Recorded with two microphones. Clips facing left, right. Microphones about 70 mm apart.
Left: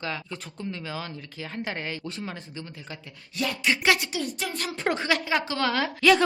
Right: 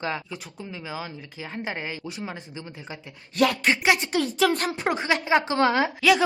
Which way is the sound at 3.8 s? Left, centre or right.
Right.